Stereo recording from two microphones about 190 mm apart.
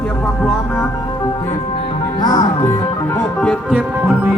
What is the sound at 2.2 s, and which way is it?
Music, 20° left (ahead or behind).